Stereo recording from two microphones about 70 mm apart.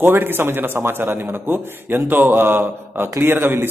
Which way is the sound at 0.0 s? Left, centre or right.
Right.